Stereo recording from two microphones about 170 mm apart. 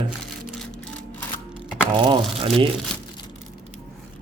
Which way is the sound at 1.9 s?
30° right (ahead or behind).